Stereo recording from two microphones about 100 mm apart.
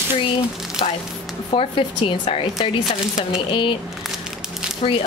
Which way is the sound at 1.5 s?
65° left (ahead or behind).